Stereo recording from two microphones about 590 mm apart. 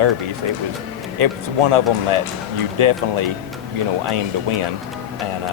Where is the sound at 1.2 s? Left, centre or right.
Right.